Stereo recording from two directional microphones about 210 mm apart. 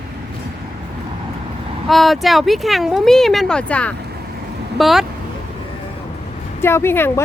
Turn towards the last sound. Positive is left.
turn(degrees=10)  # may be behind; listen again after turning